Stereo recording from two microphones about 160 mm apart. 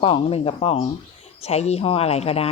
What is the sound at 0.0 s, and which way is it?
A woman's voice, 35° left (ahead or behind).